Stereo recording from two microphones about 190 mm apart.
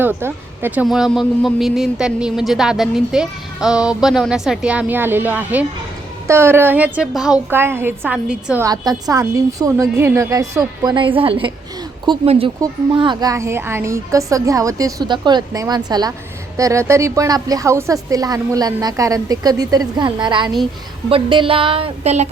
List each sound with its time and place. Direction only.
0.0 s a woman's voice: 10° right (ahead or behind)
8.6 s a woman's voice: 20° right (ahead or behind); by 22.3 s 35° right (ahead or behind)